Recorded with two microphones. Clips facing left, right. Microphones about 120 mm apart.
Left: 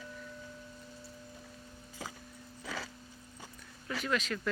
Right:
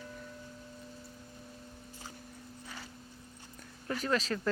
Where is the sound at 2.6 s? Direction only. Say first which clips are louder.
Left 8 dB; 90° left.